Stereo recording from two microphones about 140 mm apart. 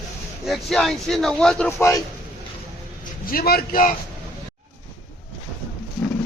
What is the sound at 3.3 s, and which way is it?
Speech, 90° left.